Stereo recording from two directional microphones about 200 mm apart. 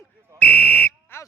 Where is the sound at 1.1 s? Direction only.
10° left (ahead or behind).